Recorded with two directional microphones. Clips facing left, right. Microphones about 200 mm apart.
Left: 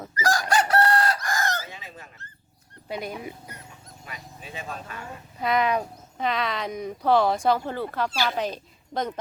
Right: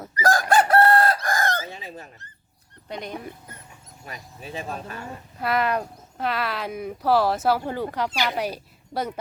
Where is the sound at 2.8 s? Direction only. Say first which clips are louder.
Left 1 dB; 5° left (ahead or behind).